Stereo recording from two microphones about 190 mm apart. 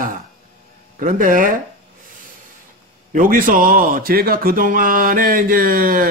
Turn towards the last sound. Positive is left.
turn(degrees=-50)  # may be behind; listen again after turning